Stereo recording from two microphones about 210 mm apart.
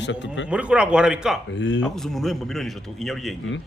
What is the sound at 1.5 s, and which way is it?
Speech, 60° left (ahead or behind).